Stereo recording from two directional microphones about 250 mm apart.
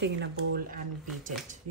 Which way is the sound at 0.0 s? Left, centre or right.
Right.